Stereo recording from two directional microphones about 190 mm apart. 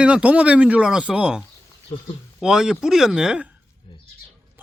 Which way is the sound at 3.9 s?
25° left (ahead or behind).